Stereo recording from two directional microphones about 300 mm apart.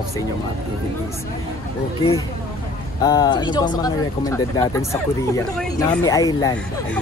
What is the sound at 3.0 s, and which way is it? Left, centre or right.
Speech, centre.